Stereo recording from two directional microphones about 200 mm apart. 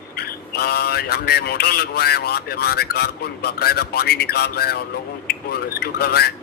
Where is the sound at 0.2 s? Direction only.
50° left (ahead or behind).